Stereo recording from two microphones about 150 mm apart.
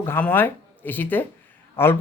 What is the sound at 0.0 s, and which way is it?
A man's voice, 15° left (ahead or behind).